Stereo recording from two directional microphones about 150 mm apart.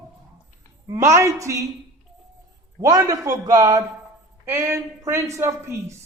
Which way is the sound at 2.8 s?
25° right (ahead or behind).